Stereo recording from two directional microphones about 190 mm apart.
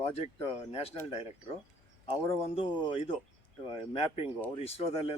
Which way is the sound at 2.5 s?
30° left (ahead or behind).